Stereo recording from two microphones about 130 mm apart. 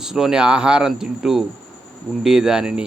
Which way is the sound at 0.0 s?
5° right (ahead or behind).